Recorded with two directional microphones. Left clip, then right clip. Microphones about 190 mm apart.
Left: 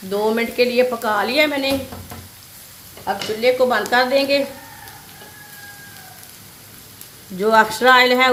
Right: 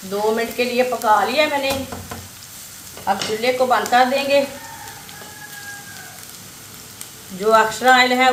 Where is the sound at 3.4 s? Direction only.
55° left (ahead or behind).